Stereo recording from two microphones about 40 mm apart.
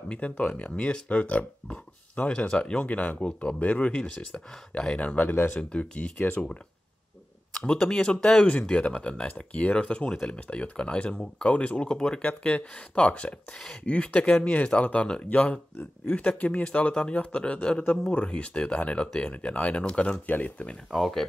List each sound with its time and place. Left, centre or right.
0.1 s speech: left
7.5 s speech: centre
12.2 s speech: left
14.8 s speech: left
20.2 s speech: left
20.9 s speech: centre